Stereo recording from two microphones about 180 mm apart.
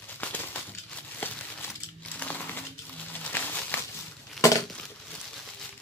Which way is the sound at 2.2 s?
10° left (ahead or behind).